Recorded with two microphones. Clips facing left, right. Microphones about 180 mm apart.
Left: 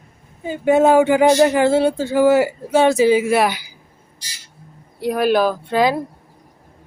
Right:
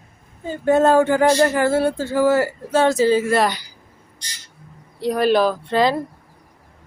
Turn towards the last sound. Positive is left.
turn(degrees=5)  # may be behind; listen again after turning